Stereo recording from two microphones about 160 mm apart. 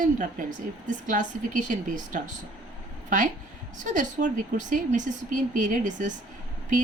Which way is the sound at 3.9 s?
50° right (ahead or behind).